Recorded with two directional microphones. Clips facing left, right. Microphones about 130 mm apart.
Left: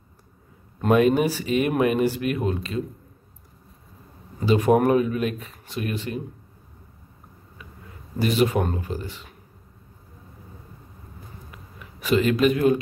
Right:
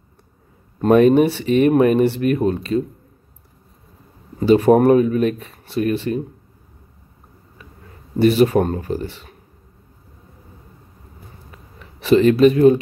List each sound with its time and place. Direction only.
0.7 s speech: 40° right (ahead or behind)
4.4 s speech: 40° right (ahead or behind)
8.2 s speech: 40° right (ahead or behind)
11.5 s a sound: 35° right (ahead or behind)